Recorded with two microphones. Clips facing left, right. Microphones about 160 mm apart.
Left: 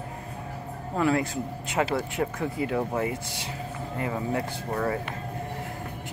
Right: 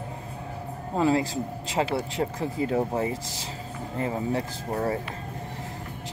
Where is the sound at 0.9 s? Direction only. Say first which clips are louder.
Right 1 dB; 25° right (ahead or behind).